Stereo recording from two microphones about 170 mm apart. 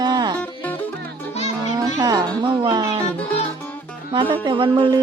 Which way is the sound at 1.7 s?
25° right (ahead or behind).